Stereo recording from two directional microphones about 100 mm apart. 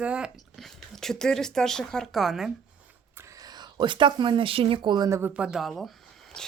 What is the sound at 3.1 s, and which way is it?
Speech, 30° right (ahead or behind).